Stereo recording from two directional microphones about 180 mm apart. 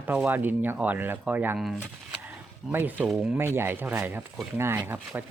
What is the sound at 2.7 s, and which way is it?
Speech, 10° right (ahead or behind).